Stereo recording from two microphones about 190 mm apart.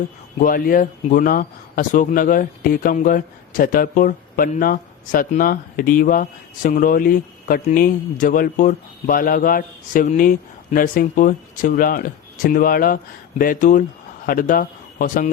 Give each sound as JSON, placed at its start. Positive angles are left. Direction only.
{"t": 0.3, "sound": "a man's voice", "side_deg": 50}